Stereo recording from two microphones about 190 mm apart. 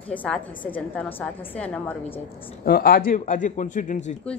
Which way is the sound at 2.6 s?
55° left (ahead or behind).